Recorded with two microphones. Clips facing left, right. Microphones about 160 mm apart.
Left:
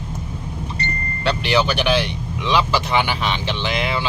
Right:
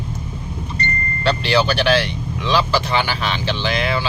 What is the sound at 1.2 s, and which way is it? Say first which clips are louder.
Speech: right 1 dB; 15° left (ahead or behind).